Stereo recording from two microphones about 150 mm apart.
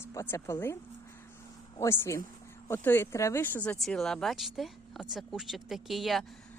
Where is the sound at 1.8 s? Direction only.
15° left (ahead or behind); by 6.2 s centre (ahead or behind).